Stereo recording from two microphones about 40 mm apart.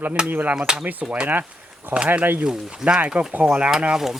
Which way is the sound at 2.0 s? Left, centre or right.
Right.